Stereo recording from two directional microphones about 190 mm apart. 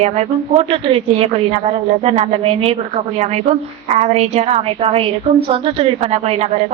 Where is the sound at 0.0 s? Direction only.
35° right (ahead or behind).